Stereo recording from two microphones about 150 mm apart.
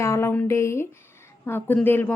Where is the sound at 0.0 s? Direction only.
15° left (ahead or behind).